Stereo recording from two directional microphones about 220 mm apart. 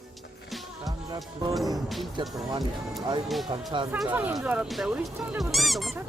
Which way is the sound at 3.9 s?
5° right (ahead or behind).